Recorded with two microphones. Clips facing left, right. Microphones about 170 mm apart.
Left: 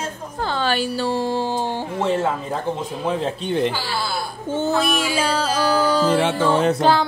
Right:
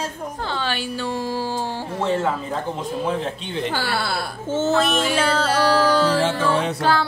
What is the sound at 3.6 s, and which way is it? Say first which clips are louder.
Speech: even; 60° right (ahead or behind).